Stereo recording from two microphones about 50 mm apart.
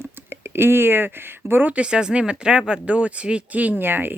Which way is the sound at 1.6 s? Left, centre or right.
Right.